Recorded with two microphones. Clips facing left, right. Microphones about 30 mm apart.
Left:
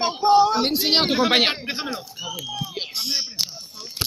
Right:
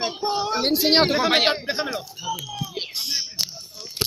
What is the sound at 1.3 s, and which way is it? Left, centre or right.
Speech, centre.